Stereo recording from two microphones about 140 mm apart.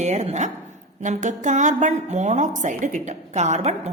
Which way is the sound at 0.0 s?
55° right (ahead or behind).